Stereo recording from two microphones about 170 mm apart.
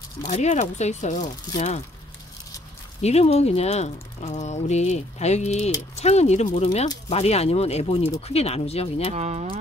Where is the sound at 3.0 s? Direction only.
40° left (ahead or behind).